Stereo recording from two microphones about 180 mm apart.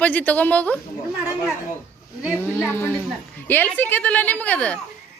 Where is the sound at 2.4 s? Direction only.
10° left (ahead or behind).